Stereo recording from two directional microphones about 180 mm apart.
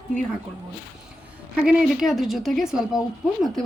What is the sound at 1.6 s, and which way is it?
Speech, 5° right (ahead or behind).